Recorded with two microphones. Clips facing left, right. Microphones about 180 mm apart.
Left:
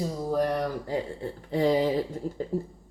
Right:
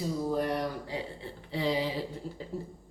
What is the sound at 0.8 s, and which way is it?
A woman's voice, 45° left (ahead or behind).